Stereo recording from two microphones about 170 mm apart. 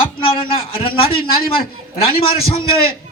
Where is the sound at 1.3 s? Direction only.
60° left (ahead or behind).